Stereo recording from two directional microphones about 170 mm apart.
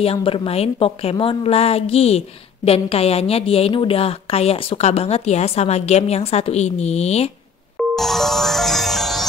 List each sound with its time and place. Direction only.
0.0 s a woman's voice: 35° left (ahead or behind)
7.9 s music: centre (ahead or behind)